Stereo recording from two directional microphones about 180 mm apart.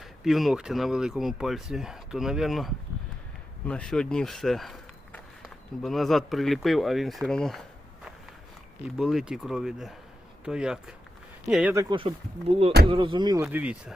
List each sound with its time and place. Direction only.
0.0 s speech: centre (ahead or behind)
9.0 s speech: centre (ahead or behind)
11.7 s speech: 15° right (ahead or behind)
12.5 s speech: 35° right (ahead or behind); by 13.9 s 10° right (ahead or behind)